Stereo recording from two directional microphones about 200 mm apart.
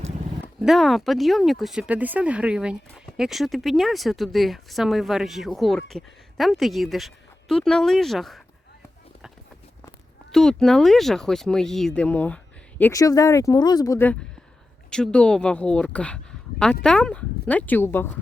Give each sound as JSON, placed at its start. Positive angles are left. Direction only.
{"t": 0.6, "sound": "speech", "side_deg": 0}
{"t": 10.3, "sound": "speech", "side_deg": 0}